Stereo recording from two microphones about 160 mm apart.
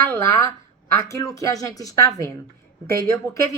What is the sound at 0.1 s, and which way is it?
A woman's voice, 20° left (ahead or behind).